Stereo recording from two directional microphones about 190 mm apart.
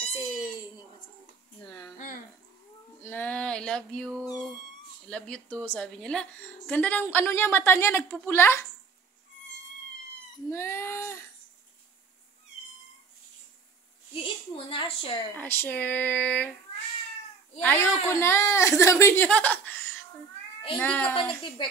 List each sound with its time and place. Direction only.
0.2 s cat: 20° left (ahead or behind)
3.0 s a sound: 10° left (ahead or behind)
5.1 s a woman's voice: 5° left (ahead or behind)
10.5 s a woman's voice: 10° left (ahead or behind)
14.1 s a woman's voice: 30° left (ahead or behind)
15.3 s a woman's voice: 10° left (ahead or behind)
17.6 s a woman's voice: 10° left (ahead or behind)
21.6 s a woman's voice: 25° left (ahead or behind)